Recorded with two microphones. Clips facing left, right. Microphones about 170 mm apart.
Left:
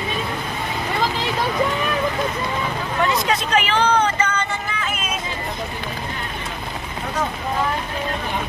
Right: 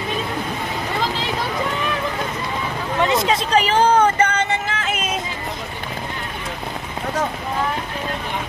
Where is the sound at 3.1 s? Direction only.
25° right (ahead or behind); by 5.0 s 70° right (ahead or behind).